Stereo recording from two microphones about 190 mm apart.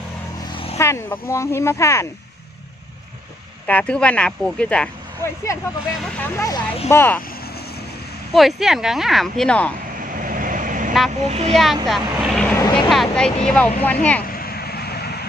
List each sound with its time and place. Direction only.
0.7 s speech: 15° left (ahead or behind)
3.6 s speech: 5° left (ahead or behind)
8.3 s speech: centre (ahead or behind)
10.2 s vehicle: 45° right (ahead or behind)
11.2 s speech: 35° right (ahead or behind)
11.5 s speech: centre (ahead or behind)
14.3 s vehicle: 55° left (ahead or behind)